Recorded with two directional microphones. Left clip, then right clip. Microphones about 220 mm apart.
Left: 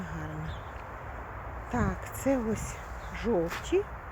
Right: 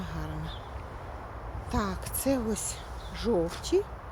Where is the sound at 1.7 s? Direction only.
5° left (ahead or behind).